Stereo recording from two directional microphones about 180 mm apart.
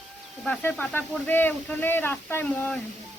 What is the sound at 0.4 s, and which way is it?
Speech, 5° left (ahead or behind).